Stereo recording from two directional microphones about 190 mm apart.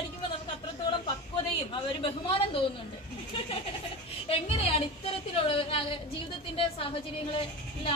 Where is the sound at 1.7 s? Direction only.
25° left (ahead or behind).